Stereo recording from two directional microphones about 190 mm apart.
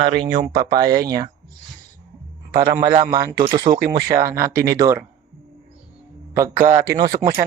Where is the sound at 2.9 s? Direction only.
25° right (ahead or behind).